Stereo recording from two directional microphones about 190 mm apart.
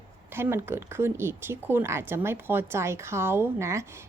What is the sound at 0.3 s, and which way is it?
Speech, 10° right (ahead or behind).